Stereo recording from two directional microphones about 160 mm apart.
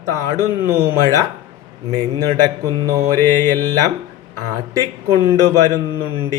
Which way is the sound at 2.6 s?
20° right (ahead or behind).